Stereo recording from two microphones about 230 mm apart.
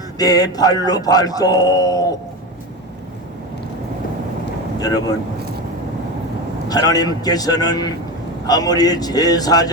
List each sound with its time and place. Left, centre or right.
0.2 s speech: centre
6.7 s speech: centre